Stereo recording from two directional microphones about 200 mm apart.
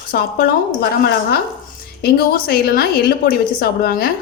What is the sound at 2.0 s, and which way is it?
A woman's voice, 50° left (ahead or behind).